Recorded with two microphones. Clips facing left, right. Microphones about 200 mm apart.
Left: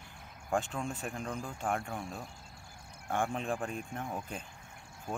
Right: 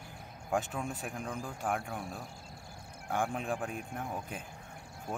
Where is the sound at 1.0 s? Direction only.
5° right (ahead or behind).